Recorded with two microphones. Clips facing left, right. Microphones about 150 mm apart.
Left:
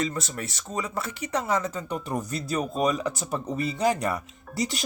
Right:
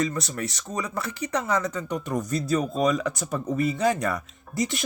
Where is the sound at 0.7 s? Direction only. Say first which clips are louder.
Left 2 dB; 25° left (ahead or behind).